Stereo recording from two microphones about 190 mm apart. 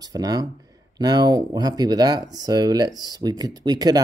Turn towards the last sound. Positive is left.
turn(degrees=-20)  # may be behind; listen again after turning